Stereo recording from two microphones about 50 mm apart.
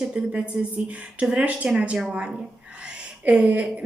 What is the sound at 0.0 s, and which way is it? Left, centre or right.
Speech, centre.